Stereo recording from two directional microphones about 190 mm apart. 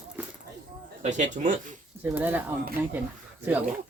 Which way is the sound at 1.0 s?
40° right (ahead or behind).